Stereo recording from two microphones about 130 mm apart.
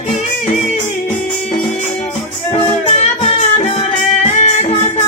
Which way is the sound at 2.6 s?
50° left (ahead or behind).